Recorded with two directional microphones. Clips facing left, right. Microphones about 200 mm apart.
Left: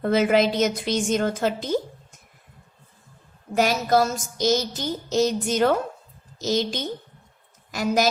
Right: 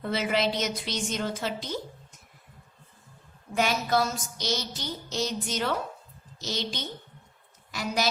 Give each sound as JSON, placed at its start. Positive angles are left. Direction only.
{"t": 0.0, "sound": "a woman's voice", "side_deg": 50}
{"t": 3.5, "sound": "a woman's voice", "side_deg": 40}